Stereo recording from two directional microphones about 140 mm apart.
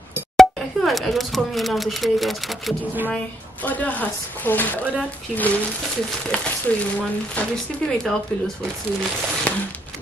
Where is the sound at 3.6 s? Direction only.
10° left (ahead or behind).